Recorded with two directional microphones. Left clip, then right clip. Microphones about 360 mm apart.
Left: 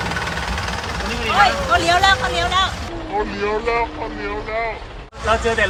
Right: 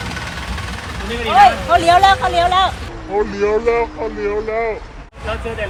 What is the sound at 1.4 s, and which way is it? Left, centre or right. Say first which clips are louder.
Vehicle: right 5 dB; centre.